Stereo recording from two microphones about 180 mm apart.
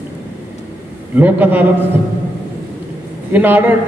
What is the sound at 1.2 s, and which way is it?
Speech, 10° right (ahead or behind).